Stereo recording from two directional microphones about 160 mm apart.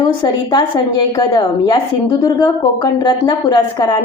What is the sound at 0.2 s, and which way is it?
Speech, 25° left (ahead or behind).